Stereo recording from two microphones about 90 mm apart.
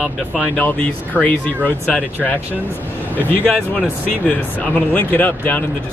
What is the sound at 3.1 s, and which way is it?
Speech, 20° left (ahead or behind).